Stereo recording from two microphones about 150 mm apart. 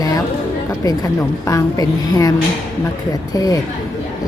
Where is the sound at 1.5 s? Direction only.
20° left (ahead or behind).